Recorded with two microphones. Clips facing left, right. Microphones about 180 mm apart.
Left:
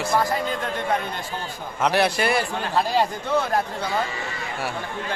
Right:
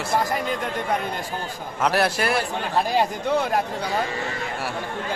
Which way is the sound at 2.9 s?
15° right (ahead or behind).